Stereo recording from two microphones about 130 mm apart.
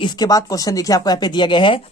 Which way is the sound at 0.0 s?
35° left (ahead or behind).